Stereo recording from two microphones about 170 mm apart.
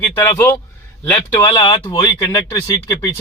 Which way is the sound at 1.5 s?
30° left (ahead or behind).